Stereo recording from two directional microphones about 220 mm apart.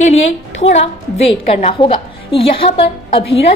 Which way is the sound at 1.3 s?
30° left (ahead or behind).